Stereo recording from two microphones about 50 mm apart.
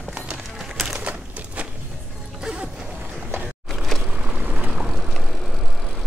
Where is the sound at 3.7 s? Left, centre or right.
Centre.